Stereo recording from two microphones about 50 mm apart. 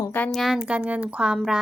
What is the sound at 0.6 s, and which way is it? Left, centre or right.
Speech, right.